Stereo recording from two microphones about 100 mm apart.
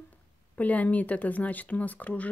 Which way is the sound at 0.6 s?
15° left (ahead or behind).